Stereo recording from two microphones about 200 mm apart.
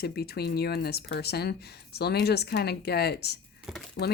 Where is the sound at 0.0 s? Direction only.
55° left (ahead or behind).